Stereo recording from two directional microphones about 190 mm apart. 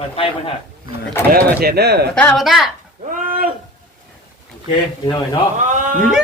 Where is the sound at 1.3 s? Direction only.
55° right (ahead or behind).